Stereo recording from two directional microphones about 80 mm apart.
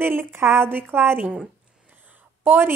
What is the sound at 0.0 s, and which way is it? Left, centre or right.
A woman's voice, right.